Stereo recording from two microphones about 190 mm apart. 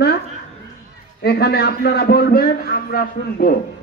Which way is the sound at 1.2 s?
55° left (ahead or behind).